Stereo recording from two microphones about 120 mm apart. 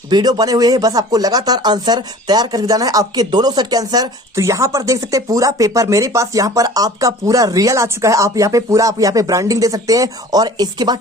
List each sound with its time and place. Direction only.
0.1 s speech: 35° right (ahead or behind)